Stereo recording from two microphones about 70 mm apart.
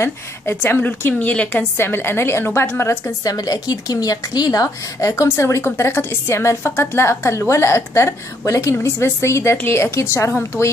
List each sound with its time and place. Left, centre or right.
0.0 s a woman's voice: left
1.8 s a woman's voice: left
3.3 s a woman's voice: left
5.1 s a woman's voice: left